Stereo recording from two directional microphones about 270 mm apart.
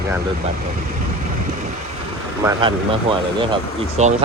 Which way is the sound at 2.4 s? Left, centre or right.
Centre.